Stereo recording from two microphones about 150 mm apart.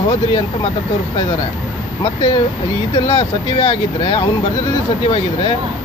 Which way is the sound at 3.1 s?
35° left (ahead or behind).